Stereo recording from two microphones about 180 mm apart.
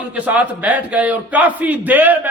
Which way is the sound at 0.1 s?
10° right (ahead or behind).